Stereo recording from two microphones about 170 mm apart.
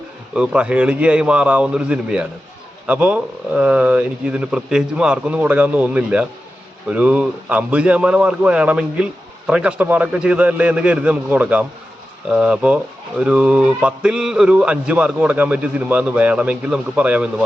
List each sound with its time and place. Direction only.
0.3 s speech: 5° right (ahead or behind)